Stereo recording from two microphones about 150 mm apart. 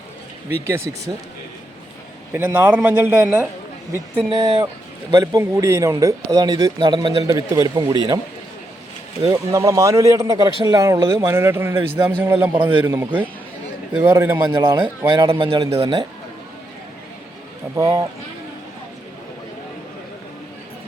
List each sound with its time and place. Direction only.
0.6 s speech: 20° right (ahead or behind)
2.3 s speech: 15° right (ahead or behind)
5.1 s speech: 25° right (ahead or behind)
9.2 s speech: 25° right (ahead or behind)
14.8 s a man's voice: 30° right (ahead or behind)
17.7 s speech: 20° right (ahead or behind)